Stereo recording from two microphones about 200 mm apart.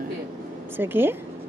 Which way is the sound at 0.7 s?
10° right (ahead or behind).